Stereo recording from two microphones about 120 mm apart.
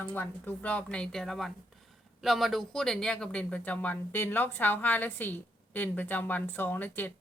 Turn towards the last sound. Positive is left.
turn(degrees=15)  # may be behind; listen again after turning